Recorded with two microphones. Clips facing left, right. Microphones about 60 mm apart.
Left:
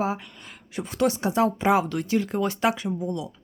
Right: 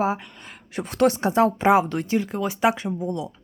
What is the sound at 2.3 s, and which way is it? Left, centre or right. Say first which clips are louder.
Speech: left 1 dB; centre.